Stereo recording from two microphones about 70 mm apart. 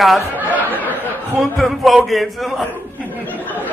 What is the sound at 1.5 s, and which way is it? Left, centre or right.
A man's voice, centre.